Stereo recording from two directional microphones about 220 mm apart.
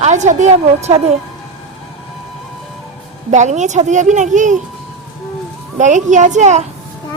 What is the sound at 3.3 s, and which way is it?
A woman's voice, 35° right (ahead or behind).